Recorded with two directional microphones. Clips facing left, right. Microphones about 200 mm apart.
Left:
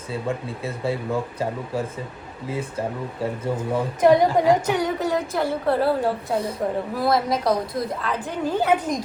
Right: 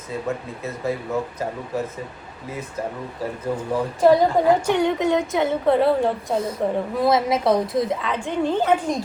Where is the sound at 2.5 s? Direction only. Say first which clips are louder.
Left 2 dB; 30° left (ahead or behind).